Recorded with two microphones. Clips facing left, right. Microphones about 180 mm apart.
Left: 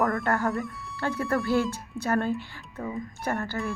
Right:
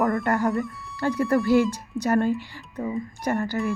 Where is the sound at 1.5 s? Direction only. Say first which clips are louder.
Right 6 dB; 15° right (ahead or behind).